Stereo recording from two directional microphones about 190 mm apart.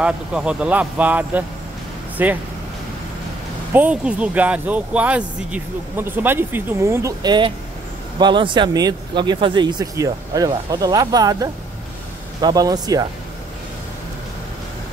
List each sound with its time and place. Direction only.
0.0 s speech: 5° right (ahead or behind)
3.7 s speech: 5° right (ahead or behind)